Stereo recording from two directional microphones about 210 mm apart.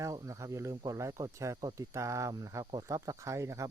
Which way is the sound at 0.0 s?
15° right (ahead or behind).